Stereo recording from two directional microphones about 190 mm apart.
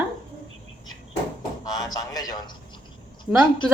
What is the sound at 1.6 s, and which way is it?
A man's voice, 20° left (ahead or behind).